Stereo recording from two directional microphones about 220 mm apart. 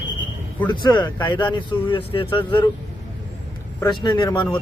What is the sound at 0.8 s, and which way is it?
Speech, 20° left (ahead or behind).